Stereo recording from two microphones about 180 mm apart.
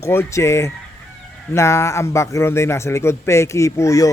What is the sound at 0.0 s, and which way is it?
A man's voice, 15° left (ahead or behind).